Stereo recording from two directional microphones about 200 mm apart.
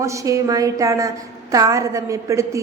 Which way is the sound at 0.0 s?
15° right (ahead or behind).